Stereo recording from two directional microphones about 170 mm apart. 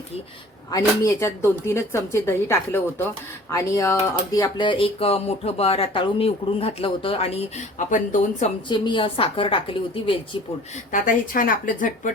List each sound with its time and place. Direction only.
0.7 s speech: 15° left (ahead or behind); by 8.4 s 50° left (ahead or behind)
8.7 s speech: 25° left (ahead or behind)
10.9 s a woman's voice: 50° left (ahead or behind)